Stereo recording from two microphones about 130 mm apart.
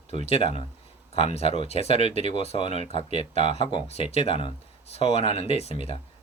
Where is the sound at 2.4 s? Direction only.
50° left (ahead or behind).